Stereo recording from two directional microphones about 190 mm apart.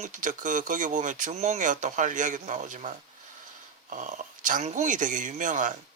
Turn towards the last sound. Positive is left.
turn(degrees=-40)  # may be behind; listen again after turning